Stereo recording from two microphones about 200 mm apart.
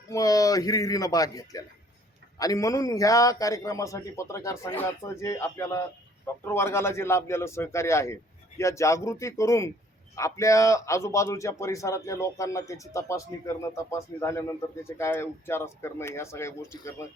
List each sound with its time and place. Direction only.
0.1 s a man's voice: 15° left (ahead or behind)